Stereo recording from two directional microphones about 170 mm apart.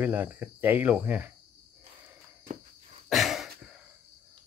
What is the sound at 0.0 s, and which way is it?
Speech, 10° right (ahead or behind).